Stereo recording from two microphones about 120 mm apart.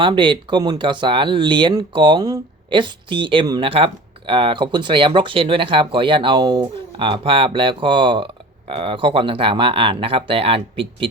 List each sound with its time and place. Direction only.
0.0 s speech: 40° right (ahead or behind)